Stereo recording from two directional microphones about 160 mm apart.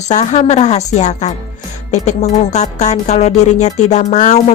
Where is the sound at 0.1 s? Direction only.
45° left (ahead or behind).